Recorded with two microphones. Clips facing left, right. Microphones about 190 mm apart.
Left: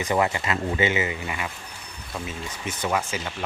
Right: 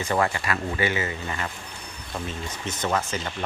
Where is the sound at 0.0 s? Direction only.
20° left (ahead or behind).